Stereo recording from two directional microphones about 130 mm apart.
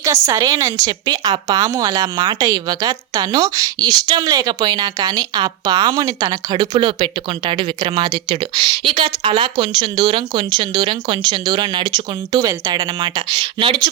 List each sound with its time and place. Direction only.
0.0 s a woman's voice: 25° right (ahead or behind)